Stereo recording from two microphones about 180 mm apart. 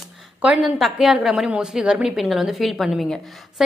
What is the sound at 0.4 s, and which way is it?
A woman's voice, 5° right (ahead or behind).